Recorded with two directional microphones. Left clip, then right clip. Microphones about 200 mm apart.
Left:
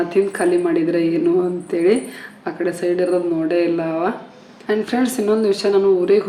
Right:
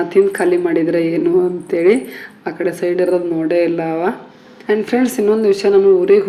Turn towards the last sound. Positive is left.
turn(degrees=-15)  # may be behind; listen again after turning